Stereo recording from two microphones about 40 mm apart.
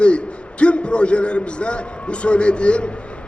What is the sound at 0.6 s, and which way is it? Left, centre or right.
A man's voice, left.